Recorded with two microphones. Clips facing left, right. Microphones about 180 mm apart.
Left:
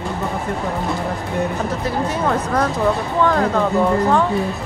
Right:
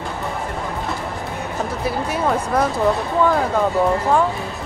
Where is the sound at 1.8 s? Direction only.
10° right (ahead or behind).